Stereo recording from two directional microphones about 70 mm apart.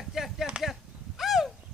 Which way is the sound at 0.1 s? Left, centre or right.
Centre.